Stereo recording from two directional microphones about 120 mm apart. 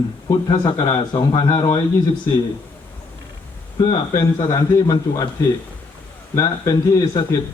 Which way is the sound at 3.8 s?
40° left (ahead or behind).